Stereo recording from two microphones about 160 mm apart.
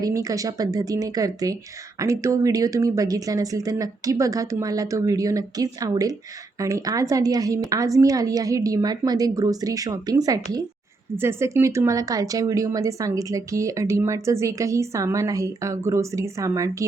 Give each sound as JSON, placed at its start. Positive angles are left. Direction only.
{"t": 0.0, "sound": "speech", "side_deg": -20}